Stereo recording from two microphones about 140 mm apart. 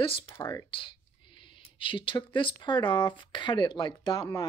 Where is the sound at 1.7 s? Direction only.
35° left (ahead or behind).